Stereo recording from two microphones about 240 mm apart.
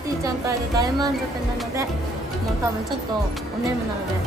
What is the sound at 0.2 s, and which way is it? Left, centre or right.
Speech, centre.